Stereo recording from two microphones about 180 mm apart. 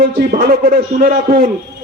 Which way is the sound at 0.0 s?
55° right (ahead or behind).